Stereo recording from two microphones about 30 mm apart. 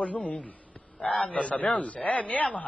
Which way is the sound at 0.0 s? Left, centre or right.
Left.